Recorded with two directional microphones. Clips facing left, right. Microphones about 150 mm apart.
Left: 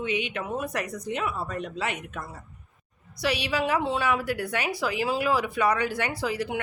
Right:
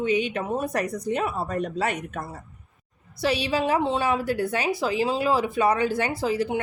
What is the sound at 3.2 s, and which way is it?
Speech, 30° right (ahead or behind).